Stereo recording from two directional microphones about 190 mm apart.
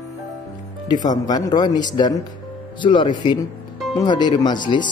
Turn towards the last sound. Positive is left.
turn(degrees=25)  # may be behind; listen again after turning